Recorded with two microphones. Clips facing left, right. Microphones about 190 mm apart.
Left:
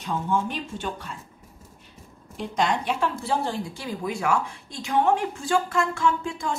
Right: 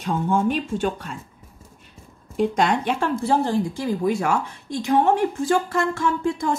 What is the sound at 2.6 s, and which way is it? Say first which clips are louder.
Speech: left 2 dB; 55° right (ahead or behind).